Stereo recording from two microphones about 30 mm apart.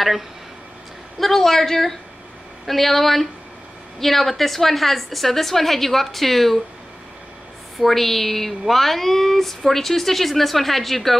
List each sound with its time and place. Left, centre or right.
1.2 s a woman's voice: centre
7.8 s a woman's voice: centre